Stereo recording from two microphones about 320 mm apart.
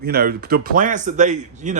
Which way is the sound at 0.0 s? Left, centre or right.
Right.